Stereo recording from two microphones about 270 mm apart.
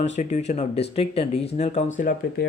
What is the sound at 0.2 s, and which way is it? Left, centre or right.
Speech, left.